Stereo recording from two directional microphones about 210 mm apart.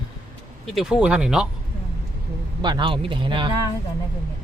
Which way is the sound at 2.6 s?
20° right (ahead or behind).